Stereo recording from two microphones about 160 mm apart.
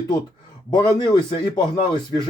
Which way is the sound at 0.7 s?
30° left (ahead or behind).